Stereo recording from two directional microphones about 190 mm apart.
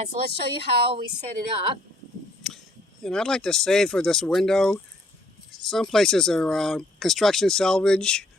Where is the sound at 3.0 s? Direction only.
5° left (ahead or behind).